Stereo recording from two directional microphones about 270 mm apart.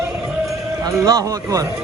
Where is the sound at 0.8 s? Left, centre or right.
Centre.